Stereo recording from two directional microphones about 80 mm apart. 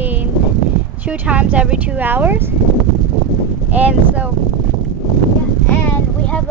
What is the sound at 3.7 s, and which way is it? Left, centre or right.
Speech, centre.